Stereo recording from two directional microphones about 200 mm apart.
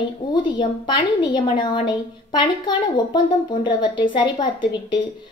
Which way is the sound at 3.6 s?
25° left (ahead or behind).